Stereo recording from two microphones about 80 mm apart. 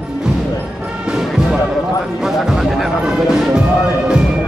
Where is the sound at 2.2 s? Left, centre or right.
Centre.